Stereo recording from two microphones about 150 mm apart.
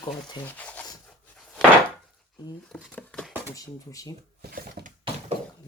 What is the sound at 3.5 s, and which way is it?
Speech, 25° left (ahead or behind).